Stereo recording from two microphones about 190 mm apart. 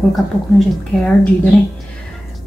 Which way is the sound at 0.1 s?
Centre (ahead or behind).